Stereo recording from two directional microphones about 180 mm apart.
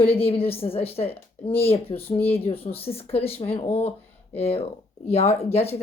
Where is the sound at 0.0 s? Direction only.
30° left (ahead or behind).